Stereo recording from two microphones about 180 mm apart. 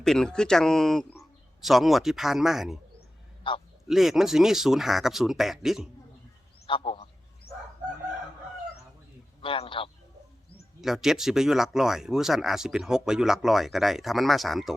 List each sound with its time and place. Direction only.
0.0 s speech: 5° left (ahead or behind)
3.5 s a man's voice: 30° left (ahead or behind)
3.8 s speech: centre (ahead or behind)
6.7 s a man's voice: 30° left (ahead or behind)
9.4 s a man's voice: 30° left (ahead or behind)
10.8 s speech: centre (ahead or behind)